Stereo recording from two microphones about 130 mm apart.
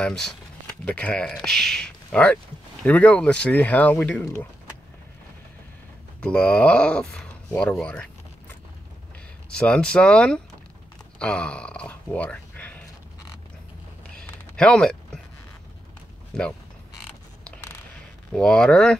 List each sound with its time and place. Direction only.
0.0 s speech: 5° left (ahead or behind); by 4.5 s 20° left (ahead or behind)
6.2 s speech: 10° left (ahead or behind)
9.6 s speech: 5° left (ahead or behind)
14.1 s a sound: 10° left (ahead or behind)
16.3 s speech: 5° left (ahead or behind)
18.3 s speech: 5° left (ahead or behind)